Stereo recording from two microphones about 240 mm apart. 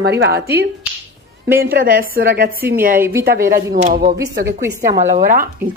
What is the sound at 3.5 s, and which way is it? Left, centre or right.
Speech, right.